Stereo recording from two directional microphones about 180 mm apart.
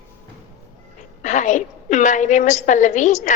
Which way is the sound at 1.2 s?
45° left (ahead or behind).